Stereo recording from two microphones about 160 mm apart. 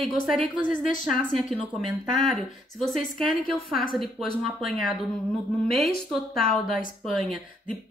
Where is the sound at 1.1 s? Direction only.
Centre (ahead or behind).